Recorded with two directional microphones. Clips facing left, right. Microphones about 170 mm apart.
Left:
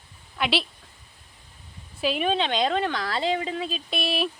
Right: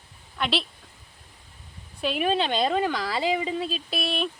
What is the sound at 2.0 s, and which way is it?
Speech, centre (ahead or behind).